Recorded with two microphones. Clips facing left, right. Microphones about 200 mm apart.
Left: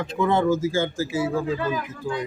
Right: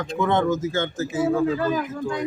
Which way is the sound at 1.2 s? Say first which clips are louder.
Right 4 dB; 50° right (ahead or behind).